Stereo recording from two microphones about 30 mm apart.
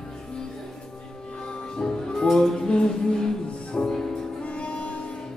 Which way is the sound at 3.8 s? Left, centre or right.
Left.